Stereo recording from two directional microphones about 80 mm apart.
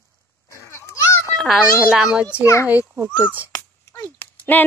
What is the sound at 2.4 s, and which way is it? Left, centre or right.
Speech, left.